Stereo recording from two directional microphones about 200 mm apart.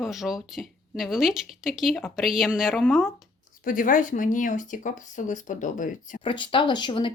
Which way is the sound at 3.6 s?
40° left (ahead or behind).